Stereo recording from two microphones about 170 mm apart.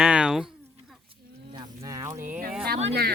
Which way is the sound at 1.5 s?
25° right (ahead or behind).